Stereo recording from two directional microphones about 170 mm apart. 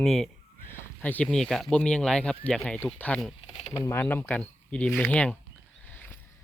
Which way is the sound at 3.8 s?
15° left (ahead or behind).